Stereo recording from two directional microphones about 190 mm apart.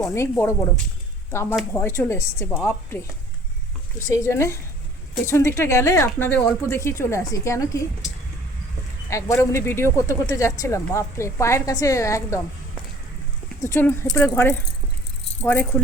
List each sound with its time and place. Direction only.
0.0 s speech: 15° left (ahead or behind)
4.0 s speech: 15° left (ahead or behind)
9.0 s speech: 15° left (ahead or behind)
13.6 s speech: 15° left (ahead or behind)